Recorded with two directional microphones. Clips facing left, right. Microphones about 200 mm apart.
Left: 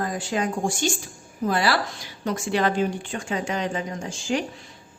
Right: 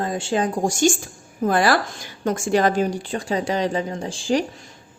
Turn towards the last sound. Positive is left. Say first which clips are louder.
# right 5 dB
turn(degrees=-35)  # may be behind; listen again after turning